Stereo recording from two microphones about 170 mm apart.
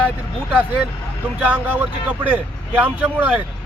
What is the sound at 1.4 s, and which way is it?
Speech, 10° right (ahead or behind).